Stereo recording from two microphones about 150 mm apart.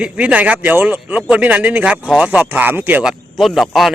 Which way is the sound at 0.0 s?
10° right (ahead or behind).